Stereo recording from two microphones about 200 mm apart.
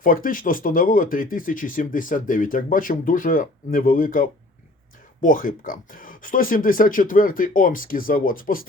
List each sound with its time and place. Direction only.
0.0 s speech: 45° left (ahead or behind)